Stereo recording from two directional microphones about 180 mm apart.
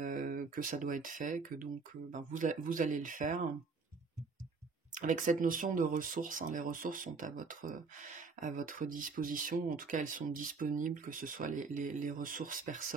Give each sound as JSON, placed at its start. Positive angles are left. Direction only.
{"t": 0.0, "sound": "speech", "side_deg": -50}
{"t": 4.9, "sound": "speech", "side_deg": -45}